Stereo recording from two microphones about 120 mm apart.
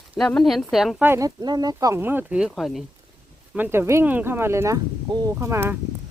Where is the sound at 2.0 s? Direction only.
15° right (ahead or behind).